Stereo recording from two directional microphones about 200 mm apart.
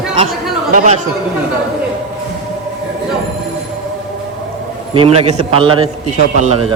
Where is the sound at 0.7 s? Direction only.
40° right (ahead or behind).